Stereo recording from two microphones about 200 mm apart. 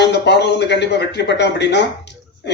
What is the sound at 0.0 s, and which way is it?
Speech, 60° left (ahead or behind).